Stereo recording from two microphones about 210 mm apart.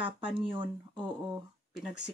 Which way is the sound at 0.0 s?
25° right (ahead or behind).